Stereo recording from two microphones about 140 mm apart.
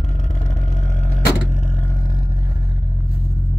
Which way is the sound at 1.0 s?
55° left (ahead or behind).